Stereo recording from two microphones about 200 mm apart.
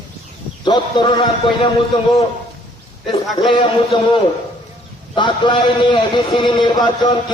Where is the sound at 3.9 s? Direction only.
25° left (ahead or behind).